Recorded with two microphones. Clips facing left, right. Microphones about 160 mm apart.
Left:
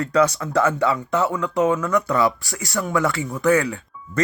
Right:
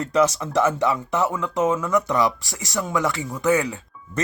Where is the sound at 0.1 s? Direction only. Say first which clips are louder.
Even; 20° right (ahead or behind).